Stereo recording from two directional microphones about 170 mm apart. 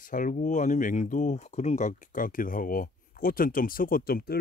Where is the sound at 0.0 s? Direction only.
50° left (ahead or behind).